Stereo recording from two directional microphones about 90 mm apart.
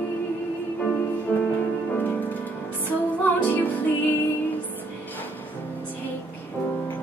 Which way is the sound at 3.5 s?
20° left (ahead or behind).